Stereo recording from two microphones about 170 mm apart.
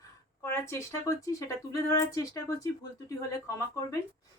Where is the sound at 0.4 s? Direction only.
15° left (ahead or behind).